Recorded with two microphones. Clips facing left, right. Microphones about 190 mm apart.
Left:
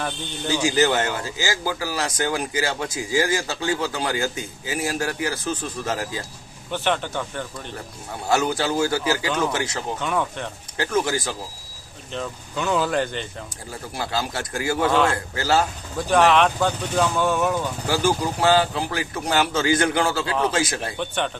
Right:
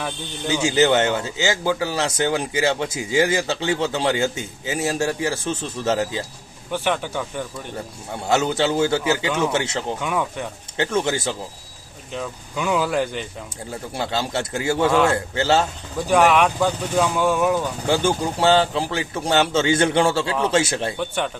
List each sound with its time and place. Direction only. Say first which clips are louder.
0.4 s a man's voice: right 2 dB; 20° right (ahead or behind)
6.7 s speech: right 1 dB; 10° right (ahead or behind)
8.3 s a man's voice: right 2 dB; 25° right (ahead or behind)
10.0 s speech: right 1 dB; 5° right (ahead or behind)
10.8 s a man's voice: right 1 dB; 25° right (ahead or behind)
12.1 s speech: right 1 dB; 10° right (ahead or behind)
13.9 s a man's voice: right 3 dB; 25° right (ahead or behind)
16.0 s speech: right 1 dB; 10° right (ahead or behind)
17.8 s a man's voice: right 1 dB; 25° right (ahead or behind)
21.0 s speech: right 1 dB; 5° right (ahead or behind)